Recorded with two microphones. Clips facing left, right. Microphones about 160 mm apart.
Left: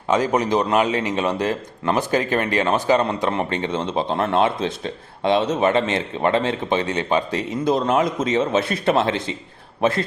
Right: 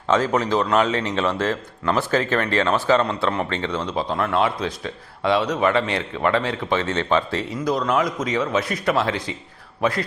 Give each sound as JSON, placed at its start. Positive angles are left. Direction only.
{"t": 0.1, "sound": "a man's voice", "side_deg": 15}